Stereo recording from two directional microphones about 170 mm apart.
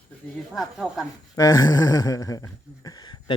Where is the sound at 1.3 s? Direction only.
20° left (ahead or behind).